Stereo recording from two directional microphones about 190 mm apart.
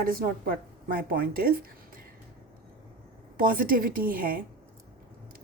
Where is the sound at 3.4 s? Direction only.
50° right (ahead or behind).